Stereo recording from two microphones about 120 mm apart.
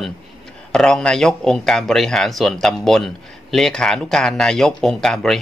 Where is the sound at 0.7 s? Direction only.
5° left (ahead or behind).